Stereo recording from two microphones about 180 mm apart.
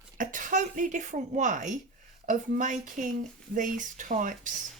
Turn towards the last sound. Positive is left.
turn(degrees=-45)  # may be behind; listen again after turning